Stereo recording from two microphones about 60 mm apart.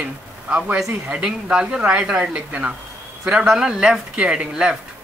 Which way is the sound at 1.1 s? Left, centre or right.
Centre.